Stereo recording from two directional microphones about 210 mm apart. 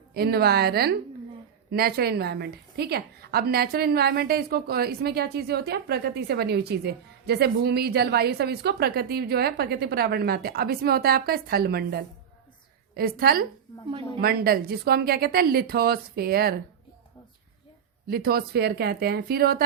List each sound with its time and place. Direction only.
0.1 s a woman's voice: 50° right (ahead or behind)
18.1 s a woman's voice: 45° right (ahead or behind)